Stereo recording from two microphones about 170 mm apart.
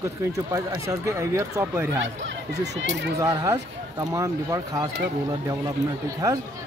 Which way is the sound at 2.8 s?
90° right.